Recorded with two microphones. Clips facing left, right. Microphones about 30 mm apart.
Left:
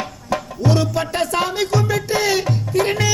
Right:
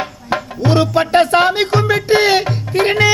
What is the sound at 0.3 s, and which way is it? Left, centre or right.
Music, right.